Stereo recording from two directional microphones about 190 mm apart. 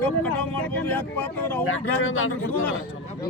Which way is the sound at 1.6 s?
90° left.